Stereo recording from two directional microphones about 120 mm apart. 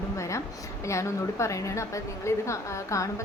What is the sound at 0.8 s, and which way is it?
A woman's voice, 25° left (ahead or behind).